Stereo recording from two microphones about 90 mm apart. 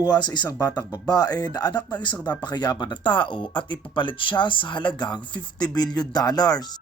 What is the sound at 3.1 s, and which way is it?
Speech, 60° left (ahead or behind).